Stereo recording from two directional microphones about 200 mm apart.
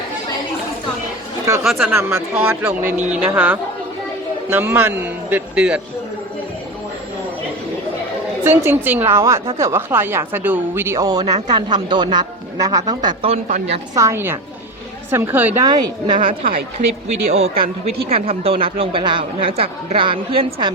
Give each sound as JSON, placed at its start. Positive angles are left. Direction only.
{"t": 1.6, "sound": "speech", "side_deg": 0}
{"t": 1.9, "sound": "speech", "side_deg": -15}
{"t": 8.4, "sound": "speech", "side_deg": -10}
{"t": 13.9, "sound": "speech", "side_deg": -15}
{"t": 15.6, "sound": "speech", "side_deg": -20}
{"t": 16.1, "sound": "speech", "side_deg": -45}
{"t": 17.6, "sound": "speech", "side_deg": -30}